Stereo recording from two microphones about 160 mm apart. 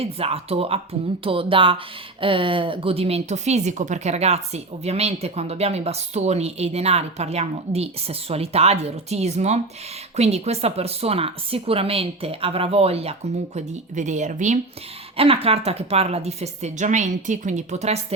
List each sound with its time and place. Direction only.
0.0 s speech: 40° right (ahead or behind)
15.1 s a woman's voice: 35° right (ahead or behind)